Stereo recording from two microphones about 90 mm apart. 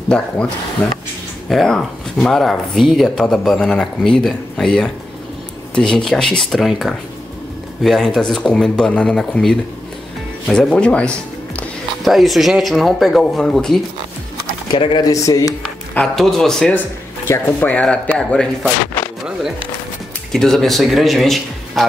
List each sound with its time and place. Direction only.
0.1 s speech: 10° left (ahead or behind)
12.0 s speech: centre (ahead or behind)
14.8 s speech: 70° left (ahead or behind)
15.0 s speech: 40° left (ahead or behind)
16.2 s speech: 5° left (ahead or behind)
17.3 s speech: 25° left (ahead or behind)
19.0 s a sound: 15° left (ahead or behind)
20.3 s speech: 5° left (ahead or behind)